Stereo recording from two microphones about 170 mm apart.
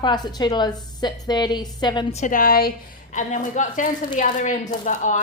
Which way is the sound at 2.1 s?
45° left (ahead or behind).